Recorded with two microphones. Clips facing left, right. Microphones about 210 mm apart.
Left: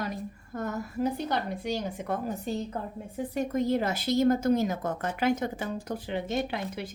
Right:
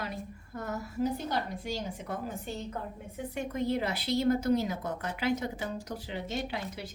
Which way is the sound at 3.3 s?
45° left (ahead or behind).